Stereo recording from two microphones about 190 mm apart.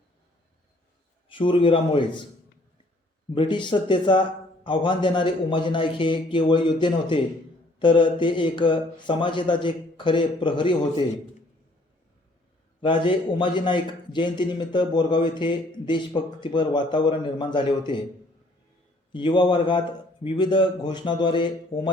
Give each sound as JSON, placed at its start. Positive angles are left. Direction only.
{"t": 1.3, "sound": "a man's voice", "side_deg": 25}
{"t": 3.3, "sound": "a man's voice", "side_deg": 25}
{"t": 12.8, "sound": "a man's voice", "side_deg": 25}
{"t": 19.1, "sound": "a man's voice", "side_deg": 25}